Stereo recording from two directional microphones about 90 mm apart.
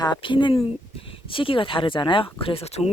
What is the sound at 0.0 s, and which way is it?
Speech, 60° left (ahead or behind).